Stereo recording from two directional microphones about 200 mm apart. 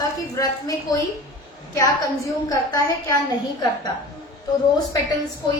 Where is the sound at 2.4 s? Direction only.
15° left (ahead or behind).